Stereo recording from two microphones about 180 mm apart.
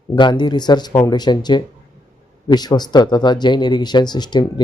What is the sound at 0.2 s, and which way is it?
Speech, 25° left (ahead or behind).